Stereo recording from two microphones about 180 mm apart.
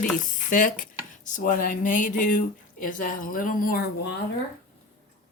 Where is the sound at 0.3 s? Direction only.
50° left (ahead or behind).